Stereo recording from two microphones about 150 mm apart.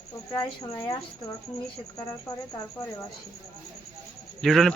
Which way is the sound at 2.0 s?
20° left (ahead or behind).